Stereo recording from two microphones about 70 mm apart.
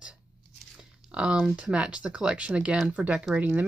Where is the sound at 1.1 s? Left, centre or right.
Centre.